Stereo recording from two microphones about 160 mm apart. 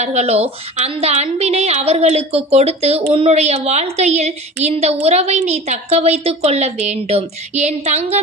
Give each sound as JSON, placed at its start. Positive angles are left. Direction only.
{"t": 0.0, "sound": "a woman's voice", "side_deg": -45}